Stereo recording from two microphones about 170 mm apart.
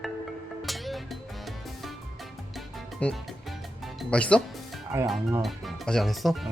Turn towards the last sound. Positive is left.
turn(degrees=0)  # may be behind; listen again after turning